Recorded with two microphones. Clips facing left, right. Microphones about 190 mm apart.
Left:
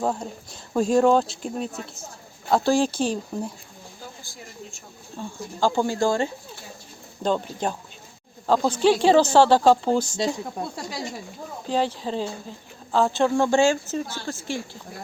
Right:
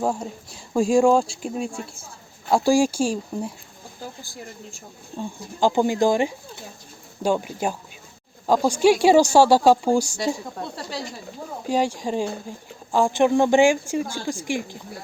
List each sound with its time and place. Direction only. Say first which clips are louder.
0.0 s speech: right 1 dB; 10° right (ahead or behind)
5.1 s speech: right 2 dB; 15° right (ahead or behind)
10.6 s speech: even; 10° left (ahead or behind)
11.6 s speech: right 2 dB; 10° right (ahead or behind)